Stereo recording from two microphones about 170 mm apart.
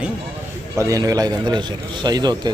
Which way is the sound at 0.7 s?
20° right (ahead or behind).